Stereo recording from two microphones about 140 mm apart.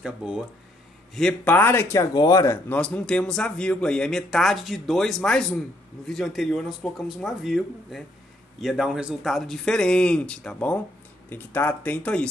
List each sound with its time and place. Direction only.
0.0 s speech: 5° right (ahead or behind)
1.1 s speech: 10° left (ahead or behind)
2.8 s speech: 5° left (ahead or behind)